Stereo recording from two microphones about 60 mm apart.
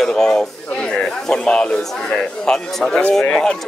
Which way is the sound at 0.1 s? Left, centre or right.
Centre.